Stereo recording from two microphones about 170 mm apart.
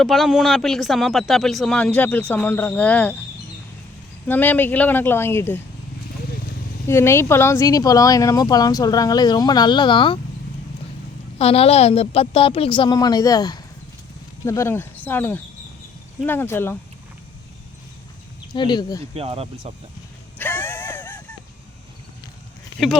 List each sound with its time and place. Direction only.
0.0 s speech: centre (ahead or behind)
4.3 s speech: 10° left (ahead or behind)
6.8 s speech: 15° left (ahead or behind)
11.3 s a woman's voice: 35° left (ahead or behind); by 16.7 s 15° left (ahead or behind)
18.5 s speech: 25° left (ahead or behind)
19.1 s speech: 35° right (ahead or behind)
20.4 s a sound: 10° left (ahead or behind)